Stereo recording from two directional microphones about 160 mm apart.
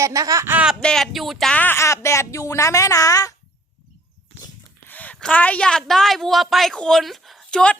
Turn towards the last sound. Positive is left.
turn(degrees=5)  # may be behind; listen again after turning